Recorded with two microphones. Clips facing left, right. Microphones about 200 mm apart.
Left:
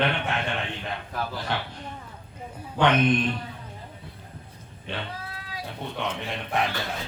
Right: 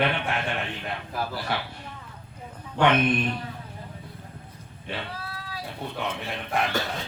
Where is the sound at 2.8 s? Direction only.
5° right (ahead or behind).